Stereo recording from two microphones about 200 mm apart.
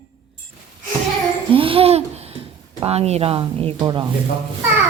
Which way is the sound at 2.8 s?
30° right (ahead or behind).